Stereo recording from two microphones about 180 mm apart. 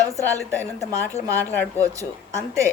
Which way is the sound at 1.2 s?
10° left (ahead or behind).